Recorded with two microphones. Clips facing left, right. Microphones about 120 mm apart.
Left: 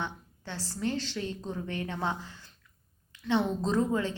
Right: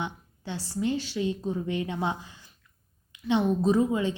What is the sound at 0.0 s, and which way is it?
A woman's voice, 15° right (ahead or behind).